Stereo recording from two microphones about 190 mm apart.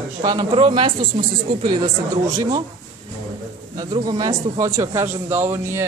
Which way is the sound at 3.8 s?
20° right (ahead or behind).